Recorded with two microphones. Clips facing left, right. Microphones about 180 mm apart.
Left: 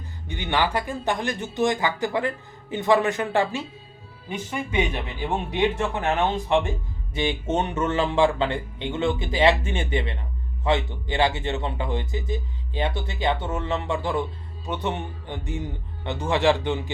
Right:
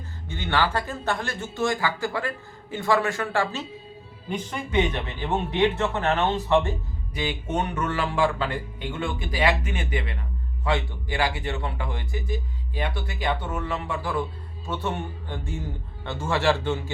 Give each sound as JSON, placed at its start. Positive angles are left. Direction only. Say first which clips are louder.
{"t": 0.3, "sound": "speech", "louder": "left 1 dB", "side_deg": 15}
{"t": 4.3, "sound": "speech", "louder": "even", "side_deg": 10}
{"t": 7.1, "sound": "a man's voice", "louder": "left 4 dB", "side_deg": 25}